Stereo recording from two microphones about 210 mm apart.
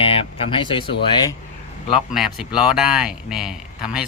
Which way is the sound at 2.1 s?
5° right (ahead or behind).